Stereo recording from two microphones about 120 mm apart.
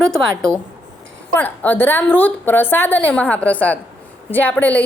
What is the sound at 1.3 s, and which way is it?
A woman's voice, 15° left (ahead or behind).